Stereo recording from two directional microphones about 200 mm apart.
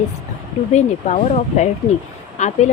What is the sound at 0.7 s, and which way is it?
A woman's voice, 35° left (ahead or behind).